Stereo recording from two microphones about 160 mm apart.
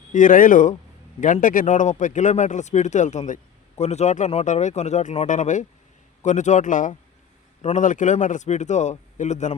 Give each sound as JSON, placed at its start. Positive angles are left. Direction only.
{"t": 0.1, "sound": "speech", "side_deg": 55}